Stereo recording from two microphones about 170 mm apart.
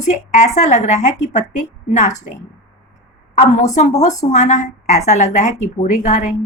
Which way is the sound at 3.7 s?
45° left (ahead or behind).